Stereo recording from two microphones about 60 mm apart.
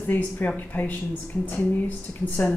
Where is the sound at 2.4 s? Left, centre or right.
Left.